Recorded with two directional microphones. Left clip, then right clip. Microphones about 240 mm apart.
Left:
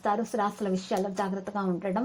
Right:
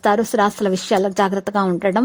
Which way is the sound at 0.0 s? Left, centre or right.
Right.